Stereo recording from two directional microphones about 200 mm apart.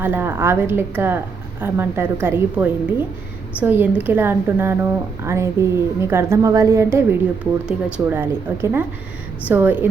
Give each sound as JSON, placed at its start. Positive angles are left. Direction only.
{"t": 0.0, "sound": "a woman's voice", "side_deg": -10}